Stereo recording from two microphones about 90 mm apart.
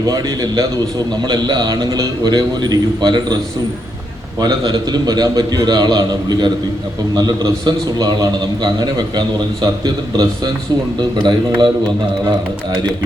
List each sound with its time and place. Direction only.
0.0 s a man's voice: 45° right (ahead or behind)
4.4 s a man's voice: 45° right (ahead or behind)
11.2 s a man's voice: 60° right (ahead or behind)